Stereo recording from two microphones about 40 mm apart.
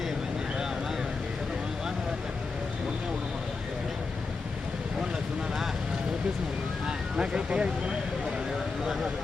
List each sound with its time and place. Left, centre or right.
6.8 s vehicle: centre